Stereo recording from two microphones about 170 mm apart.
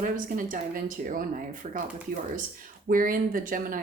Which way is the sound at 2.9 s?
55° right (ahead or behind).